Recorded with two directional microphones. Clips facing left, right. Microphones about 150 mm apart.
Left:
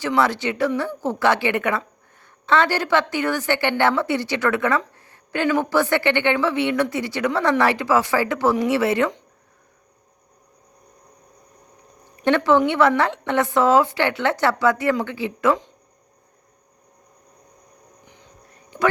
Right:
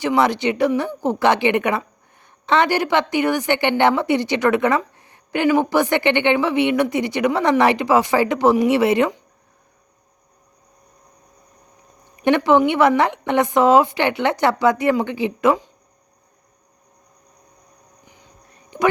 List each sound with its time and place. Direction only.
0.0 s a woman's voice: 15° right (ahead or behind)
12.1 s a woman's voice: 15° right (ahead or behind)
18.5 s a sound: 20° right (ahead or behind)